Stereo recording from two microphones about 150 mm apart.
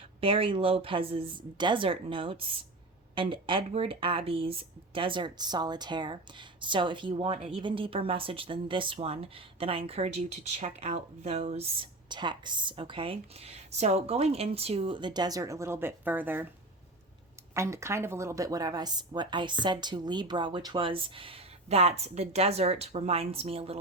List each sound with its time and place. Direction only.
0.2 s a woman's voice: 35° right (ahead or behind); by 16.5 s 10° right (ahead or behind)
17.5 s a woman's voice: 20° right (ahead or behind); by 23.8 s 40° right (ahead or behind)